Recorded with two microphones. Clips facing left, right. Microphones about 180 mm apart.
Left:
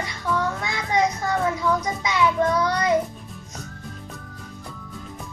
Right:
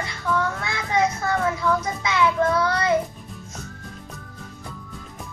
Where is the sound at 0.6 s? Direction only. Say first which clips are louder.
Even; 15° left (ahead or behind).